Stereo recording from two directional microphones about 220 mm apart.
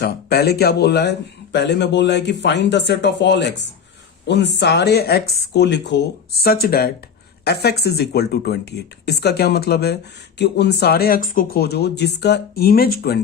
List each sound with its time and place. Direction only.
0.0 s speech: 45° left (ahead or behind)